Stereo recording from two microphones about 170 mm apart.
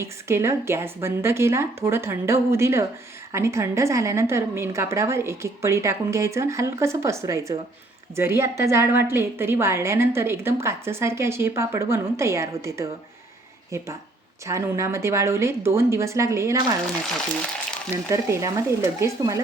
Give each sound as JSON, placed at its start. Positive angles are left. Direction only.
{"t": 0.0, "sound": "a woman's voice", "side_deg": -15}
{"t": 18.1, "sound": "a woman's voice", "side_deg": -20}